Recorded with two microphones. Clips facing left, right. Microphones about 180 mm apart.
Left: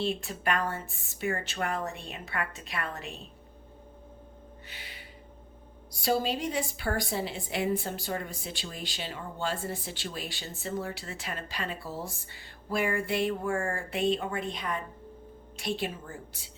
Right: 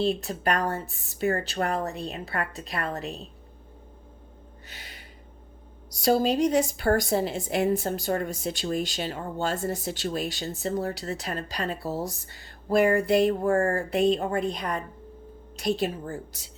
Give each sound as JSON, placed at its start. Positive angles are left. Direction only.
{"t": 0.0, "sound": "speech", "side_deg": -40}
{"t": 4.7, "sound": "a sound", "side_deg": -45}
{"t": 5.9, "sound": "a woman's voice", "side_deg": -45}